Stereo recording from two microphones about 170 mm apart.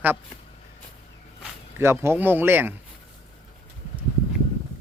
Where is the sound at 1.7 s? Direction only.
15° right (ahead or behind).